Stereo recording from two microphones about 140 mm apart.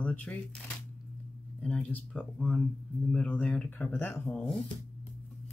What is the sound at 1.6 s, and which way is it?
Speech, 5° left (ahead or behind).